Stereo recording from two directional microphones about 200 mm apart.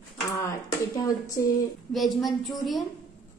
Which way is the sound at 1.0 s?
15° left (ahead or behind).